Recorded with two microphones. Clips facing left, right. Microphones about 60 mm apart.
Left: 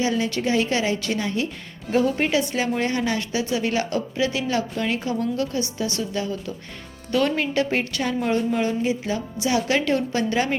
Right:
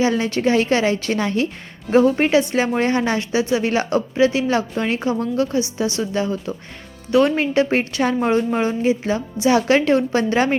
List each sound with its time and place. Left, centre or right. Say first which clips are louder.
0.0 s a woman's voice: right 5 dB; right
1.2 s a woman's voice: right 5 dB; right
1.9 s a woman's voice: right 6 dB; right